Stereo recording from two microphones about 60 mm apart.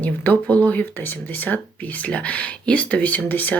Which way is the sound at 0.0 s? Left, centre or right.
Left.